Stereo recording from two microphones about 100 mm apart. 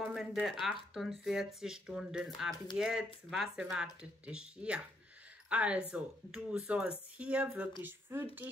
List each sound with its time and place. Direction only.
0.1 s speech: 5° right (ahead or behind); by 8.3 s 20° right (ahead or behind)